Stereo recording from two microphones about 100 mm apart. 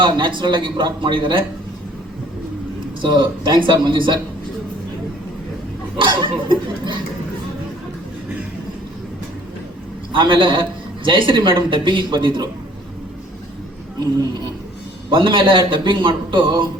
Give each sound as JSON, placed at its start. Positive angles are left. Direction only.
{"t": 0.0, "sound": "a man's voice", "side_deg": -50}
{"t": 3.0, "sound": "a man's voice", "side_deg": -50}
{"t": 6.0, "sound": "a man's voice", "side_deg": -55}
{"t": 10.1, "sound": "speech", "side_deg": -60}
{"t": 15.1, "sound": "speech", "side_deg": -55}